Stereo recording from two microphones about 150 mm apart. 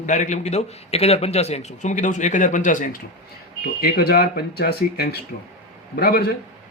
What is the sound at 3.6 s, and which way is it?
Speech, 90° left.